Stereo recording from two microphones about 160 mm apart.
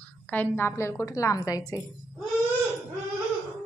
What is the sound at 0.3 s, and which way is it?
Speech, 10° left (ahead or behind).